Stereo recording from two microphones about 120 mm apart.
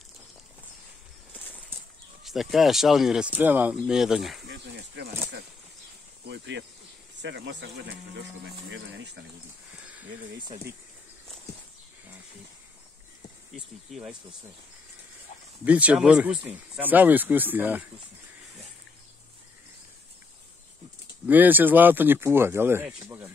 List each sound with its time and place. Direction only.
2.2 s speech: centre (ahead or behind)
3.7 s speech: 5° right (ahead or behind)
13.6 s speech: 5° right (ahead or behind)
15.6 s speech: 10° right (ahead or behind)
21.3 s speech: 15° right (ahead or behind)